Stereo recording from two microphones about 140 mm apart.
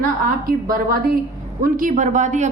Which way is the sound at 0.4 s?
90° right.